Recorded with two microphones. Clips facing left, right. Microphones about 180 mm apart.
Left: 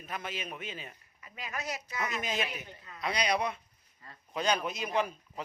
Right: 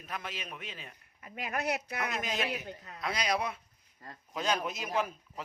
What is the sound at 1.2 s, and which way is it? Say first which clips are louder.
Speech: right 5 dB; 55° right (ahead or behind).